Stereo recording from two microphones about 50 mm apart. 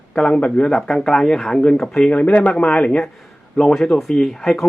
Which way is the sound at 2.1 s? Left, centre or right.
Left.